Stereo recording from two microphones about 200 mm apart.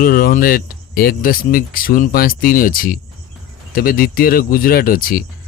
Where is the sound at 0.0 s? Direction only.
45° left (ahead or behind).